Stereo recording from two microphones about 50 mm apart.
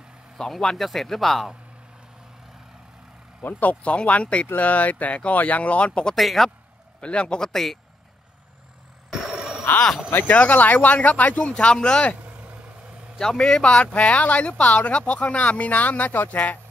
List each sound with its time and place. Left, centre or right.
0.4 s speech: centre
3.4 s speech: left
6.1 s speech: centre
7.0 s a man's voice: left
9.1 s a sound: centre
10.1 s speech: left
12.2 s vehicle: right
13.2 s speech: centre; by 16.5 s left